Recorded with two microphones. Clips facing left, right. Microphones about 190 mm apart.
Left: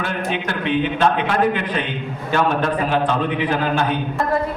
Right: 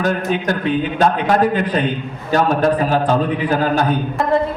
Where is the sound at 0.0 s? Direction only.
40° right (ahead or behind).